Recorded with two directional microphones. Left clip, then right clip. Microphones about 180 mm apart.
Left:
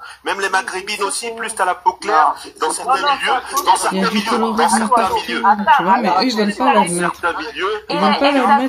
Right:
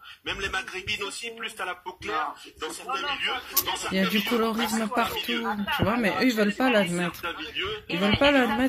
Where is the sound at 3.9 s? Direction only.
35° right (ahead or behind).